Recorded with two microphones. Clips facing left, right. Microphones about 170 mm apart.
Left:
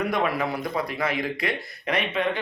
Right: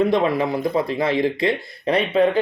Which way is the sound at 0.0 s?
25° right (ahead or behind).